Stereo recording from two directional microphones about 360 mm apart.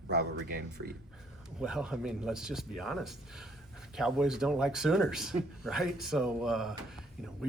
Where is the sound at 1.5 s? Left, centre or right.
Centre.